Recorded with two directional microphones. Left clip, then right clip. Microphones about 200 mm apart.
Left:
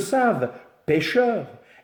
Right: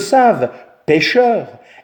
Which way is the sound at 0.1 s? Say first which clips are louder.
Right 10 dB; 35° right (ahead or behind).